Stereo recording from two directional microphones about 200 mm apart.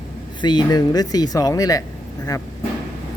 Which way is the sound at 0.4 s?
20° left (ahead or behind).